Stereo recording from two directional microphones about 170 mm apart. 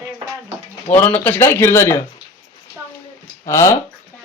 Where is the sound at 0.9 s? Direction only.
10° left (ahead or behind).